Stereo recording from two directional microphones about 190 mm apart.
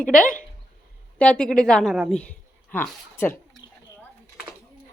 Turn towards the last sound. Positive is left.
turn(degrees=10)  # may be behind; listen again after turning